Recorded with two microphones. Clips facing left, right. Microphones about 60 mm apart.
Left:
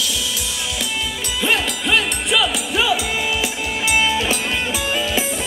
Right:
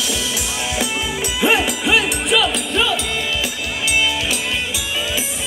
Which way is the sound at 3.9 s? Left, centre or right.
Left.